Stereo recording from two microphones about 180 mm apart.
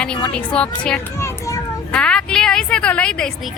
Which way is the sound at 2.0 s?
5° left (ahead or behind).